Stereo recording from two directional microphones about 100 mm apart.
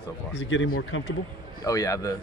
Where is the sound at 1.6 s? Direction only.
35° left (ahead or behind).